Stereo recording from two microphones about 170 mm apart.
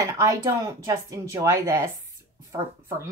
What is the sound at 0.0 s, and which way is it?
Speech, 20° right (ahead or behind).